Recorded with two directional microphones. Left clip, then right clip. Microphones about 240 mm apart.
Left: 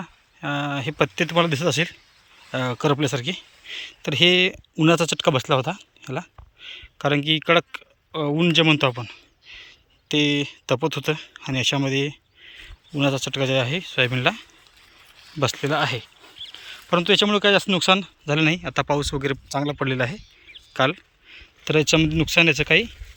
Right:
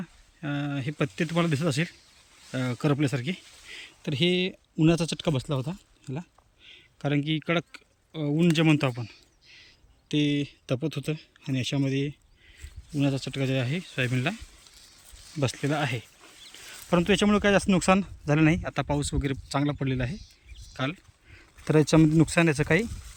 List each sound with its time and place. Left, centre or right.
0.0 s speech: centre
5.5 s speech: left
6.0 s speech: centre
20.7 s a sound: centre
22.3 s speech: right